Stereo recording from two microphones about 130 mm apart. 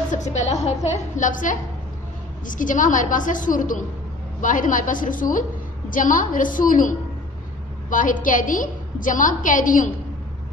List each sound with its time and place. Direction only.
0.1 s a woman's voice: 65° left (ahead or behind); by 9.8 s 90° left